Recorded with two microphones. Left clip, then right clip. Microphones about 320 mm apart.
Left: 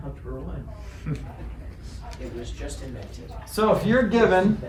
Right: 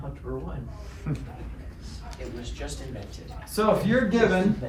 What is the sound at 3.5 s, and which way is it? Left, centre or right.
Speech, centre.